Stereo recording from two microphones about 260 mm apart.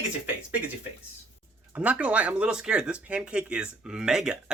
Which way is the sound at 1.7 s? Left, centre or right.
Centre.